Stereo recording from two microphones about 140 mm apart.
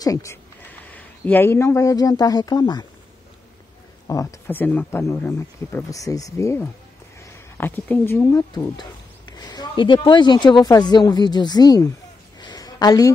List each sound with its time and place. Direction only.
0.0 s speech: 25° left (ahead or behind)
4.1 s speech: 20° left (ahead or behind)
12.4 s a sound: 30° left (ahead or behind)